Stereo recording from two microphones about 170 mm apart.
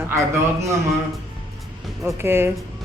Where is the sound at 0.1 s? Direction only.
15° right (ahead or behind).